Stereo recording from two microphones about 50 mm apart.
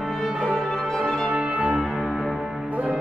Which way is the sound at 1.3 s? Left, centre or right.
Centre.